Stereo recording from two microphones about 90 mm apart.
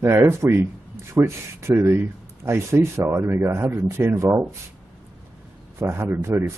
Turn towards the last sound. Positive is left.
turn(degrees=-30)  # may be behind; listen again after turning